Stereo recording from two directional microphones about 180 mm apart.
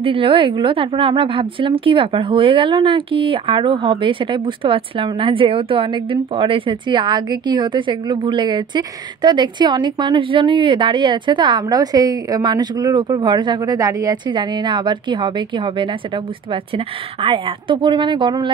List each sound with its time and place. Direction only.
0.0 s a woman's voice: 30° right (ahead or behind)